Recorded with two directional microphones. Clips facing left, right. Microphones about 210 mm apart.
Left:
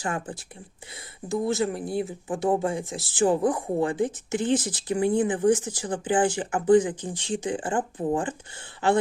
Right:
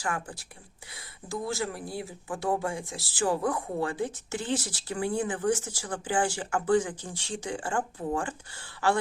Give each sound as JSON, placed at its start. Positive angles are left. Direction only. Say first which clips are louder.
{"t": 0.0, "sound": "speech", "louder": "left 3 dB", "side_deg": 20}